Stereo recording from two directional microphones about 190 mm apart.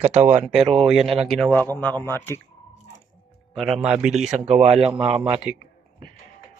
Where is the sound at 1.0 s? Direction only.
30° right (ahead or behind).